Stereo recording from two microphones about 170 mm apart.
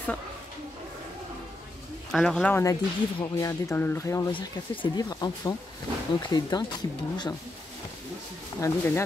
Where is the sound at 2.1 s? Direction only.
5° left (ahead or behind).